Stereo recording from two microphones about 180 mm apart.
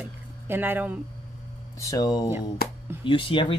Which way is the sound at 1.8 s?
20° left (ahead or behind).